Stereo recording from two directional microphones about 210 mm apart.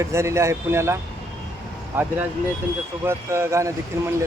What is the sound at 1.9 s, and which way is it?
Speech, 10° right (ahead or behind).